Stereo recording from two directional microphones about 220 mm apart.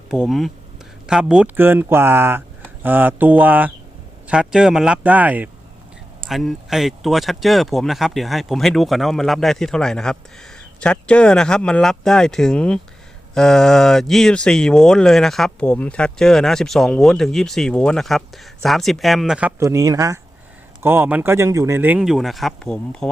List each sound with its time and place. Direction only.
0.1 s speech: centre (ahead or behind)